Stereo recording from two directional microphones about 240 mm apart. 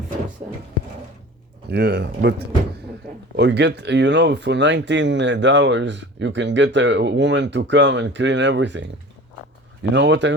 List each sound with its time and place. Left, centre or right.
1.7 s speech: right
3.3 s speech: right
9.9 s speech: right